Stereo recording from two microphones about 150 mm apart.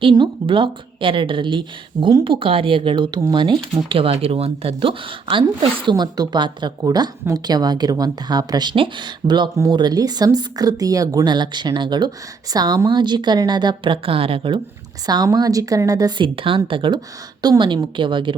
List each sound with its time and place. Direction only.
0.0 s a woman's voice: 35° right (ahead or behind)
15.0 s a woman's voice: 25° right (ahead or behind)